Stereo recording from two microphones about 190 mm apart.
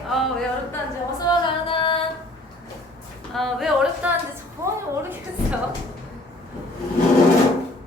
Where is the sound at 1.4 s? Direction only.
25° left (ahead or behind).